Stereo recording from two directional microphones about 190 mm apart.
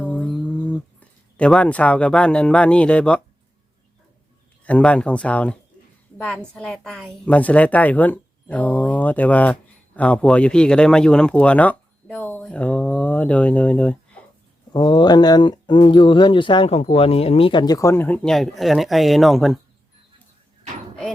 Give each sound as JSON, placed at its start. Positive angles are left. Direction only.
{"t": 0.0, "sound": "a sound", "side_deg": 5}
{"t": 4.6, "sound": "a woman's voice", "side_deg": 5}
{"t": 14.7, "sound": "speech", "side_deg": 20}